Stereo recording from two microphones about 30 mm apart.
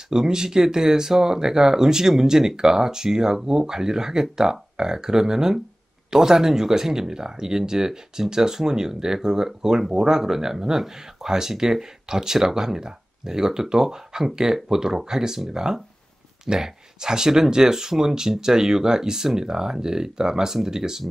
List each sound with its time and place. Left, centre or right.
0.1 s speech: right
11.3 s speech: centre